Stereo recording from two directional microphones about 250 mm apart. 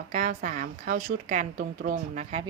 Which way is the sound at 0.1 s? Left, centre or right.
Right.